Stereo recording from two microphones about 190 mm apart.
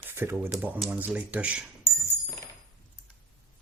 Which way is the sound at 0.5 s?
5° right (ahead or behind).